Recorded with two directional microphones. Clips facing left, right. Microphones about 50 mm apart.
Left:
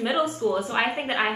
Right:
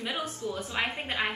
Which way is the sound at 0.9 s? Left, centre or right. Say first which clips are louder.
Left 6 dB; left.